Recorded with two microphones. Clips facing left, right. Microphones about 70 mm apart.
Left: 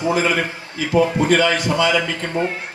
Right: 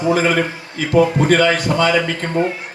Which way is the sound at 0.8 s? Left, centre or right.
Right.